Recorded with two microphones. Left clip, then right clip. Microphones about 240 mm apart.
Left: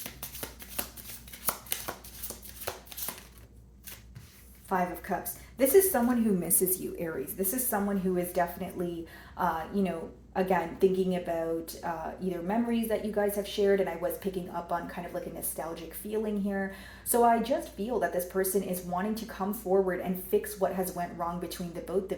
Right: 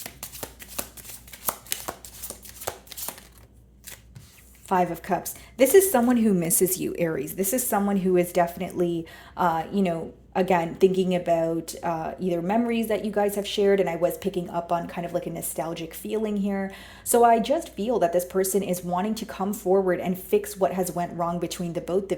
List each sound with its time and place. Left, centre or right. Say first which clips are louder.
0.0 s shuffling cards: right 3 dB; right
1.9 s a sound: right 4 dB; right
4.7 s a woman's voice: right 7 dB; right